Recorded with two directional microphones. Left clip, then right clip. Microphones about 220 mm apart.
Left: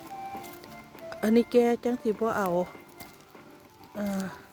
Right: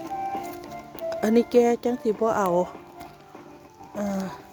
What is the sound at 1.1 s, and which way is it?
Speech, 10° right (ahead or behind).